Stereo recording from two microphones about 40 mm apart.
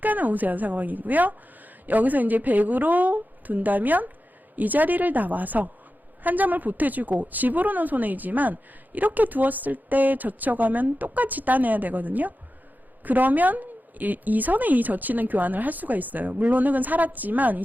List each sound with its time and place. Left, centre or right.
0.0 s a woman's voice: right